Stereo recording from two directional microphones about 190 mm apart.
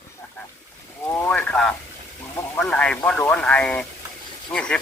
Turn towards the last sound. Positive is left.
turn(degrees=5)  # may be behind; listen again after turning